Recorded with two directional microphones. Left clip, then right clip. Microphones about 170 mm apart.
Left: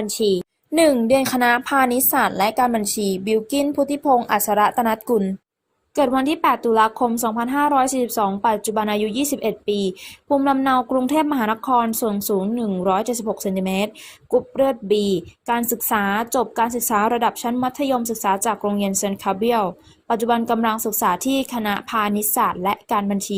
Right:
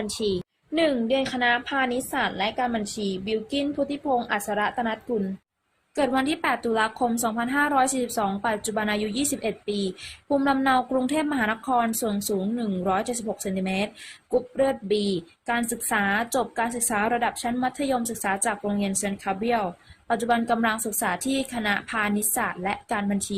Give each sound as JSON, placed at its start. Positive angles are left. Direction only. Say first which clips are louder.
{"t": 0.0, "sound": "a woman's voice", "louder": "left 7 dB", "side_deg": 15}
{"t": 0.8, "sound": "a woman's voice", "louder": "left 7 dB", "side_deg": 30}
{"t": 6.0, "sound": "a woman's voice", "louder": "left 6 dB", "side_deg": 10}